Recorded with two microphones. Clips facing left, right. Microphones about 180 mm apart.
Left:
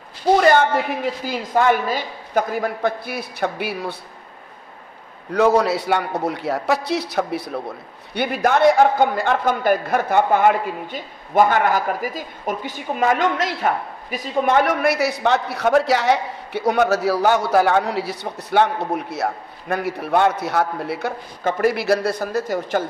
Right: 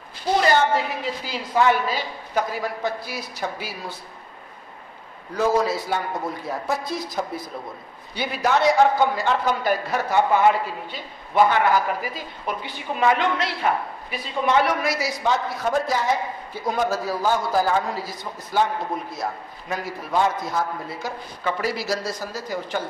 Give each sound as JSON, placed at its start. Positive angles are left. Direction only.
{"t": 0.4, "sound": "a woman's voice", "side_deg": 55}
{"t": 5.3, "sound": "a man's voice", "side_deg": 65}
{"t": 21.5, "sound": "a woman's voice", "side_deg": 50}